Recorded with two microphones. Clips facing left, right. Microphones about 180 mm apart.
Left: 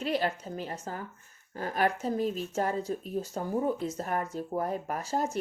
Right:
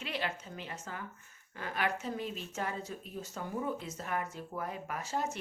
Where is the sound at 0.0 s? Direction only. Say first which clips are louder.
Left 8 dB; 40° left (ahead or behind).